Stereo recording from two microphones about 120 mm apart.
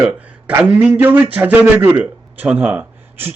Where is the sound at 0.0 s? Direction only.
5° right (ahead or behind).